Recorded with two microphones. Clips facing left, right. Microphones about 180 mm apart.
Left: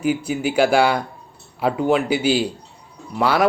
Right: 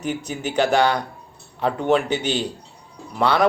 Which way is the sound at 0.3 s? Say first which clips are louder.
Left 1 dB; 10° left (ahead or behind).